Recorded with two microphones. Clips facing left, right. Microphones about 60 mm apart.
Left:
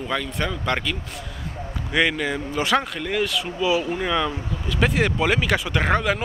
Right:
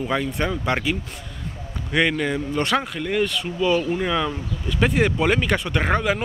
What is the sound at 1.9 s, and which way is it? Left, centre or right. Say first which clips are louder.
Speech: right 1 dB; centre.